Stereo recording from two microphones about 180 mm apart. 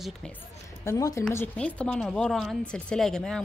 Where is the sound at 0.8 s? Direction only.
20° left (ahead or behind).